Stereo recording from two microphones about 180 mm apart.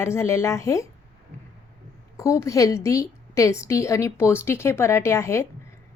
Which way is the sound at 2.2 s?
20° left (ahead or behind).